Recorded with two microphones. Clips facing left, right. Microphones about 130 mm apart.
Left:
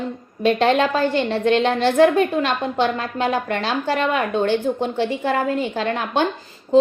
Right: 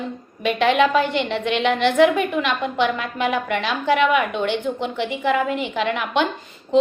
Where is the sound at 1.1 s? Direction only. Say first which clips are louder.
Left 4 dB; 40° left (ahead or behind).